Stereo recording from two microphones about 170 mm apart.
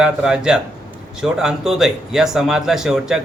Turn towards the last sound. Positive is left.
turn(degrees=-5)  # may be behind; listen again after turning